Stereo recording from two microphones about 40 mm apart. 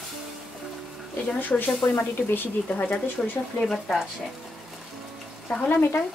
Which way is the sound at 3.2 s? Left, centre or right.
Left.